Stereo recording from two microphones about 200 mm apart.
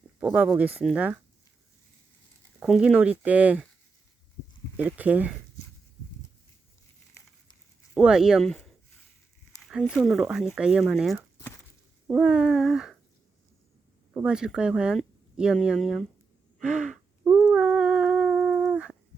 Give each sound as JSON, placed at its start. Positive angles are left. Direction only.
{"t": 0.2, "sound": "speech", "side_deg": -5}
{"t": 2.6, "sound": "speech", "side_deg": -5}
{"t": 4.9, "sound": "speech", "side_deg": -5}
{"t": 7.9, "sound": "speech", "side_deg": -5}
{"t": 9.6, "sound": "a sound", "side_deg": 0}
{"t": 9.9, "sound": "speech", "side_deg": 0}
{"t": 14.1, "sound": "speech", "side_deg": -5}
{"t": 16.6, "sound": "a sound", "side_deg": -5}